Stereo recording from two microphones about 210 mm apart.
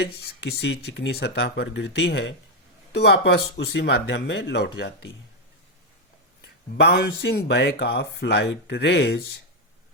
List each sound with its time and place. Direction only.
0.0 s speech: 55° left (ahead or behind)
6.7 s speech: 50° left (ahead or behind)